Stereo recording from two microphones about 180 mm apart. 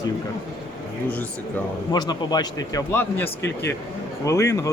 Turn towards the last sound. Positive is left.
turn(degrees=15)  # may be behind; listen again after turning